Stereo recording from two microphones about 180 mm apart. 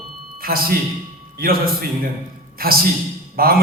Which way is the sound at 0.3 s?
55° right (ahead or behind).